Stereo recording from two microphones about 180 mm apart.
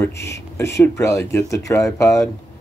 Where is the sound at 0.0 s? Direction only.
15° left (ahead or behind).